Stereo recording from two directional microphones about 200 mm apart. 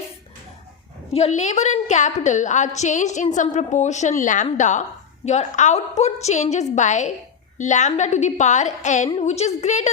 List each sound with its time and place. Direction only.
1.1 s a woman's voice: 35° left (ahead or behind)